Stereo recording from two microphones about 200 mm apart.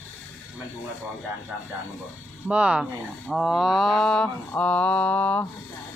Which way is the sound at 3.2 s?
Centre (ahead or behind).